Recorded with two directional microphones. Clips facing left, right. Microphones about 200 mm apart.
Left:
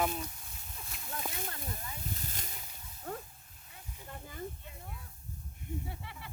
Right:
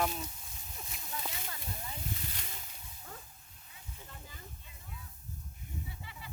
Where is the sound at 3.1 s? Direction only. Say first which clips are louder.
Left 10 dB; 60° left (ahead or behind).